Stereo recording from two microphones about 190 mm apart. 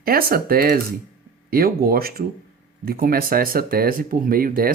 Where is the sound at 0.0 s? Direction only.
50° right (ahead or behind).